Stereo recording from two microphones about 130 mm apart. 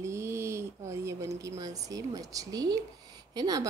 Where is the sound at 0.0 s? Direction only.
20° right (ahead or behind).